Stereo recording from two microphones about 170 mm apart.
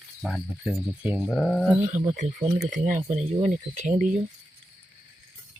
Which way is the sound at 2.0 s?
40° right (ahead or behind).